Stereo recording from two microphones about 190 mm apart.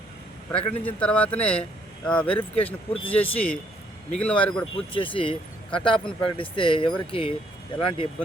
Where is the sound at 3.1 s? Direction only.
10° left (ahead or behind).